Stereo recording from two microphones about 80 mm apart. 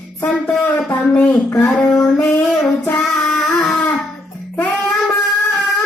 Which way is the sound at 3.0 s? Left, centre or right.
Centre.